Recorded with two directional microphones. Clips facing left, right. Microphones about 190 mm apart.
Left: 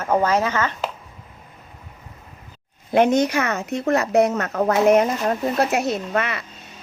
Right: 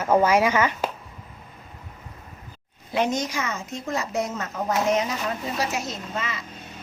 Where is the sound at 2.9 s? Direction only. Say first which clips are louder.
Left 8 dB; 55° left (ahead or behind).